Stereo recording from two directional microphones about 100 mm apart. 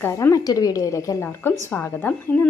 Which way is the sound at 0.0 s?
25° left (ahead or behind).